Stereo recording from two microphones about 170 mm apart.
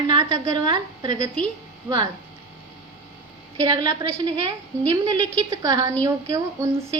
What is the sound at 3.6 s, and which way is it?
A woman's voice, 25° right (ahead or behind).